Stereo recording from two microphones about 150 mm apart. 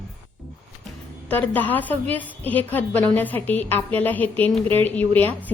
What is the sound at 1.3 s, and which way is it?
A woman's voice, 10° left (ahead or behind).